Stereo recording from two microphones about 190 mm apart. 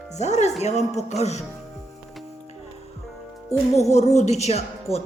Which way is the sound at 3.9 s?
35° left (ahead or behind).